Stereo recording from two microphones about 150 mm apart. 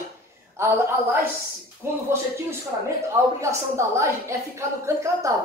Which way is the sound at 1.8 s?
15° right (ahead or behind).